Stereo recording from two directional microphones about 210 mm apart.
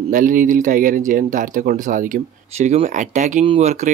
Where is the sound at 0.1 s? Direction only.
40° right (ahead or behind).